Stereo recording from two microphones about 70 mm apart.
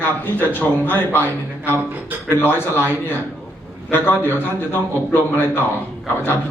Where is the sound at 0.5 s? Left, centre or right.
Left.